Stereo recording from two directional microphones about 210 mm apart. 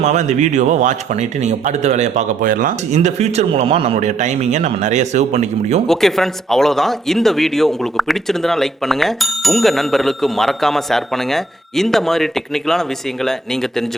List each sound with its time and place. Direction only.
0.0 s speech: 35° right (ahead or behind)
5.9 s speech: centre (ahead or behind)